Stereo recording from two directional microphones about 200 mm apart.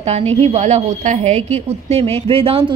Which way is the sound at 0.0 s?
30° right (ahead or behind).